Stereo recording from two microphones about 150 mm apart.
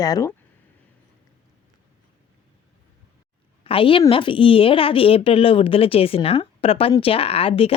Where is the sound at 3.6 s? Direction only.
35° left (ahead or behind).